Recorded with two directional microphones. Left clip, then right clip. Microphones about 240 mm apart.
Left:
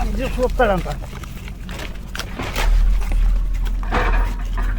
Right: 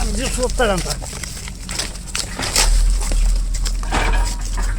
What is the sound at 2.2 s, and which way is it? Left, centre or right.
Walk, centre.